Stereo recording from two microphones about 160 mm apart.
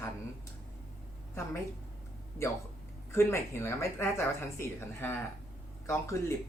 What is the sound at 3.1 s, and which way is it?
Speech, 15° left (ahead or behind).